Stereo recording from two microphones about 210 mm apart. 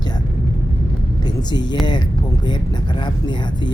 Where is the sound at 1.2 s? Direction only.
20° left (ahead or behind).